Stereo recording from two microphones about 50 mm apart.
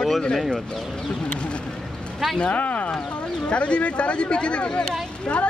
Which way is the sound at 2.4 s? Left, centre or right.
Left.